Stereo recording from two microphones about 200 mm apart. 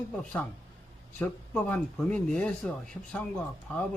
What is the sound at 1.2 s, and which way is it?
Speech, 5° left (ahead or behind).